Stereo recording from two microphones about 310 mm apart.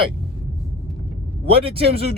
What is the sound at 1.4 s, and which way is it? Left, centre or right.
Speech, centre.